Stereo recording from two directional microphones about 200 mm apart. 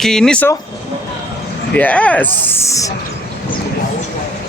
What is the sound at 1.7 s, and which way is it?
Speech, 5° left (ahead or behind).